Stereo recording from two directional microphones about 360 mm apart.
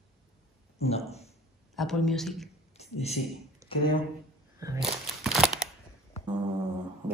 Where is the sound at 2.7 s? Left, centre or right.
Centre.